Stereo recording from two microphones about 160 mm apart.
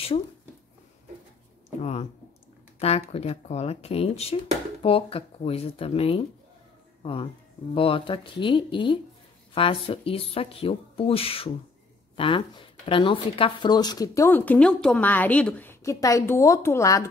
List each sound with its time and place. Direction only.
1.8 s speech: 40° left (ahead or behind); by 17.1 s 20° left (ahead or behind)